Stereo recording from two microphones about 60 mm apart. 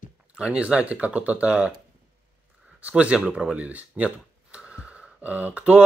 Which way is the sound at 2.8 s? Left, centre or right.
Right.